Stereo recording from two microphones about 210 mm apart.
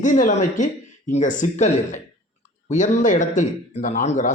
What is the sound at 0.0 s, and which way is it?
Speech, 35° left (ahead or behind).